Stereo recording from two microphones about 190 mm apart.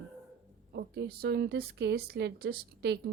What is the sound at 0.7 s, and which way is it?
Speech, 55° right (ahead or behind).